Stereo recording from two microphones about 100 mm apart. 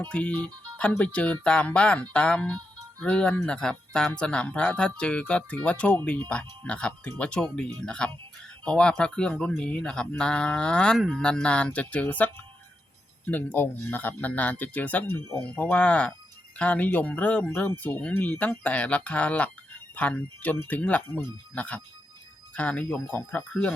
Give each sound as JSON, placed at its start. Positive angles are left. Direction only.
{"t": 0.0, "sound": "speech", "side_deg": 10}